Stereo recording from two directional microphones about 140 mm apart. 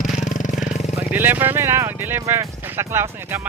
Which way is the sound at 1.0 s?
15° right (ahead or behind).